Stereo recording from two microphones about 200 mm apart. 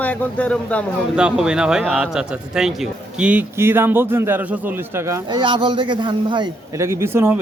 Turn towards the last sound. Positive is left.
turn(degrees=-10)  # may be behind; listen again after turning